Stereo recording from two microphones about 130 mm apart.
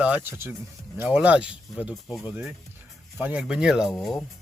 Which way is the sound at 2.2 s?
15° right (ahead or behind).